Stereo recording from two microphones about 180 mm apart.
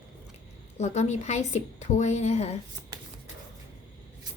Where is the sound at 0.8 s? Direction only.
40° left (ahead or behind).